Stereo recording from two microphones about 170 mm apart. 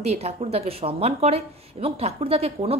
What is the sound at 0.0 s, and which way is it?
Speech, 40° right (ahead or behind).